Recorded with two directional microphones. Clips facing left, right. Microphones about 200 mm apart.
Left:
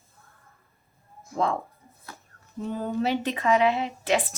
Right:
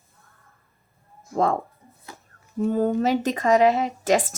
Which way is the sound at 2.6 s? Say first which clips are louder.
Right 6 dB; 45° right (ahead or behind).